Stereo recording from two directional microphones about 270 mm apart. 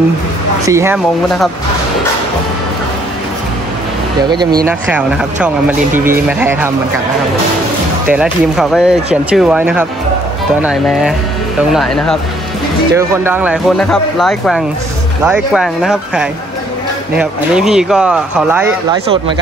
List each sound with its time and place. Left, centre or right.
0.7 s speech: centre
4.3 s speech: centre
4.6 s speech: centre
8.1 s speech: centre